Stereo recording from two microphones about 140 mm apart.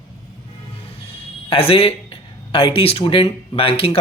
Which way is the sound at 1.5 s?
45° left (ahead or behind).